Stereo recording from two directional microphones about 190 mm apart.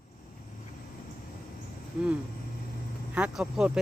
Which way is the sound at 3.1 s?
5° right (ahead or behind).